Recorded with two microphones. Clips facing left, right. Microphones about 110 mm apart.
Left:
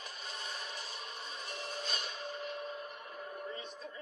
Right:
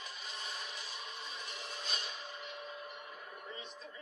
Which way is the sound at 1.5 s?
45° left (ahead or behind).